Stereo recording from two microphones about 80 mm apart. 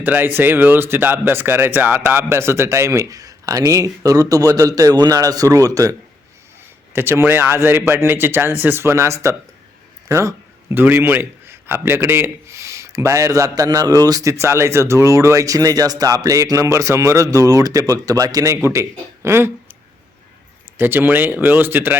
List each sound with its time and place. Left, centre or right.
0.0 s a man's voice: right
6.9 s a man's voice: right
10.1 s a sound: right
10.8 s a man's voice: right
20.7 s speech: right